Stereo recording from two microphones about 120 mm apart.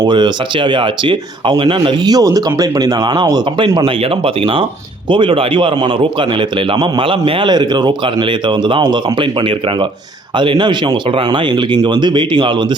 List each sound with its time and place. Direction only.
0.0 s a man's voice: 40° right (ahead or behind)